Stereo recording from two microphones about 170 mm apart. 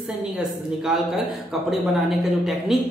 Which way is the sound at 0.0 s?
5° right (ahead or behind).